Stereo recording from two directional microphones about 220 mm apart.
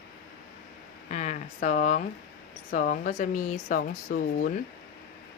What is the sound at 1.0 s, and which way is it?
Speech, 35° left (ahead or behind).